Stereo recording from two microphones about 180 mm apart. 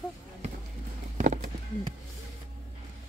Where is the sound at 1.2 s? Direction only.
45° right (ahead or behind).